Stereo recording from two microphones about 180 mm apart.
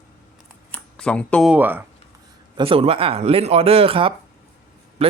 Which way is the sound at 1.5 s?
10° right (ahead or behind).